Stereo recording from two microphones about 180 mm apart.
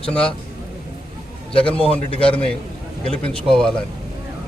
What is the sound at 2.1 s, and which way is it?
Speech, 30° left (ahead or behind).